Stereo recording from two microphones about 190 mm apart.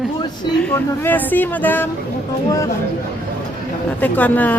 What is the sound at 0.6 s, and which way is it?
Speech, 10° left (ahead or behind).